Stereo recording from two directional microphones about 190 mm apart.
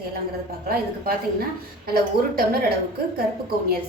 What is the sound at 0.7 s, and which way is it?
A woman's voice, 55° right (ahead or behind).